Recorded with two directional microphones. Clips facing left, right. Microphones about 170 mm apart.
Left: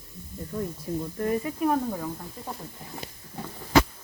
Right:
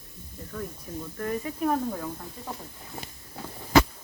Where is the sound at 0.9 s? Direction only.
20° left (ahead or behind).